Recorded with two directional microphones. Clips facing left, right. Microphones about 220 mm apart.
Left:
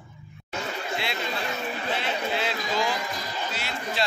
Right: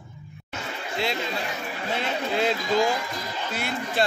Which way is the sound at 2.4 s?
45° right (ahead or behind).